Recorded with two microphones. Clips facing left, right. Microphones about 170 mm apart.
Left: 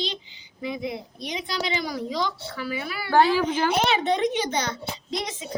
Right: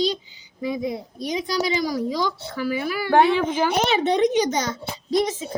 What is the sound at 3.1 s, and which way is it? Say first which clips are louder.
Speech: right 2 dB; 20° right (ahead or behind).